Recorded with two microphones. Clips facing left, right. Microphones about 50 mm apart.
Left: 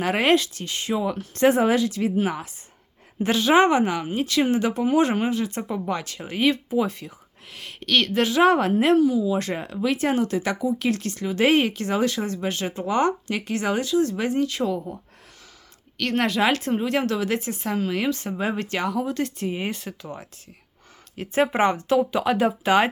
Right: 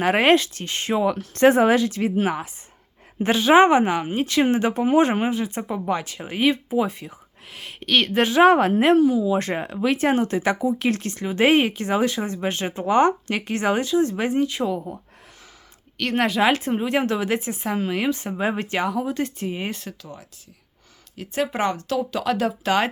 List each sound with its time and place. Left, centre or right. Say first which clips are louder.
0.0 s speech: right 3 dB; right
1.0 s speech: right 3 dB; right
3.2 s speech: right 3 dB; right
8.1 s speech: right 4 dB; right; by 14.9 s centre
16.0 s speech: right 1 dB; centre
20.0 s speech: left 4 dB; left
21.5 s speech: left 4 dB; left